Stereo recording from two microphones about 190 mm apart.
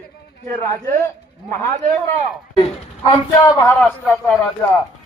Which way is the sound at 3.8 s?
5° left (ahead or behind).